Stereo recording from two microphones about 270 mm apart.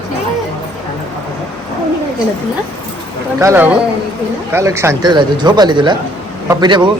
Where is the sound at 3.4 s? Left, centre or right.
Centre.